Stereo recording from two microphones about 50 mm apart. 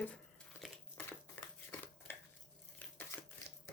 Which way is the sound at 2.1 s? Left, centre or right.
Left.